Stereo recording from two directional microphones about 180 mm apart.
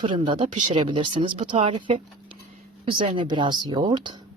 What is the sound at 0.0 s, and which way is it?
Speech, 30° right (ahead or behind).